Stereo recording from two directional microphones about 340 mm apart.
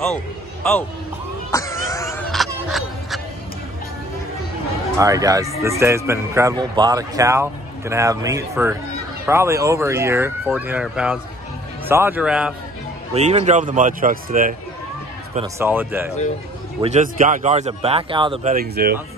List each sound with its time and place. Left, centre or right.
1.5 s a sound: centre
4.9 s a man's voice: centre
13.1 s speech: centre
15.3 s a man's voice: centre
16.8 s speech: right